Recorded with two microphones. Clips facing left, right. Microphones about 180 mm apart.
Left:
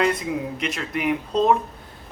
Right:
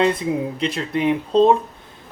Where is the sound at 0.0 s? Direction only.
30° right (ahead or behind).